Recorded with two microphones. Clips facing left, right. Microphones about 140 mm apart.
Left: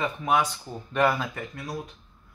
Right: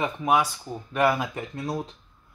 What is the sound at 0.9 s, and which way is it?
Speech, 5° right (ahead or behind).